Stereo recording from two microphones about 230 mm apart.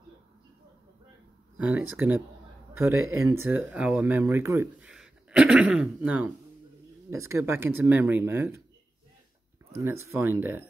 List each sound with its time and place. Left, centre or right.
1.6 s speech: centre
9.8 s speech: centre